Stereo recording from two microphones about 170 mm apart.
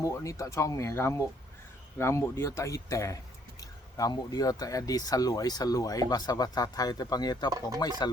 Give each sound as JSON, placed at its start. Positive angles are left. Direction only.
{"t": 0.0, "sound": "speech", "side_deg": 20}